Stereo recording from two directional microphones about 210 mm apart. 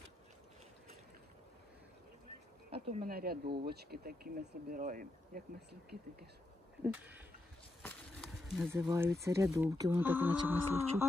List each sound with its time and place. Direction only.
2.9 s speech: 45° right (ahead or behind)
6.8 s speech: 10° right (ahead or behind)
8.7 s speech: 10° right (ahead or behind)